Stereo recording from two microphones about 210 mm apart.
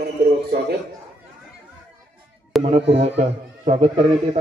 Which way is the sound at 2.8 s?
55° right (ahead or behind).